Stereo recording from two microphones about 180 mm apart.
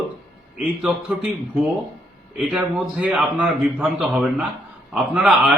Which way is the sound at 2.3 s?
5° right (ahead or behind).